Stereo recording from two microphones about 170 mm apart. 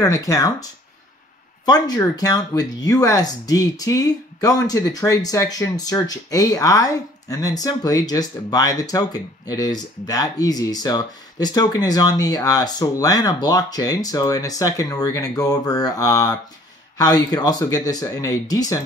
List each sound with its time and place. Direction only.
0.0 s speech: 20° left (ahead or behind)
1.7 s speech: 20° left (ahead or behind)